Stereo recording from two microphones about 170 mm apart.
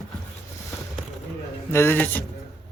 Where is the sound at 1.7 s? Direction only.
15° left (ahead or behind).